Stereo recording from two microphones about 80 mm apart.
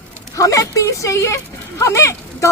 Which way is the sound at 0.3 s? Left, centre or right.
Left.